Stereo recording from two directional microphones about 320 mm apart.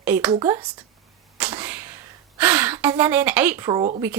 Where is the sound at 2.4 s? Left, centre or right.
Centre.